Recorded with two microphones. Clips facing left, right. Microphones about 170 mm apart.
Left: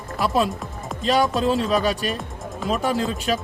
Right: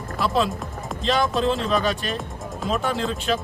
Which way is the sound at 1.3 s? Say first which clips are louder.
Left 1 dB; 10° left (ahead or behind).